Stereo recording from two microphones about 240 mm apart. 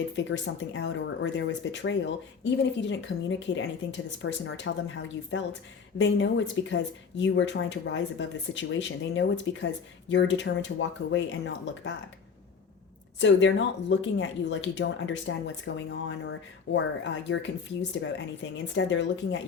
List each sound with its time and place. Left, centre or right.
0.3 s speech: left
13.1 s speech: left
18.5 s speech: left